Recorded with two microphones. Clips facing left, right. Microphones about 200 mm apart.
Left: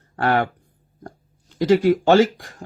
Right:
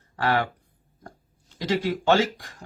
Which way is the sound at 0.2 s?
50° left (ahead or behind).